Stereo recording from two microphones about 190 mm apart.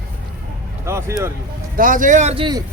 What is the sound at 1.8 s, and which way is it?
Speech, 45° right (ahead or behind).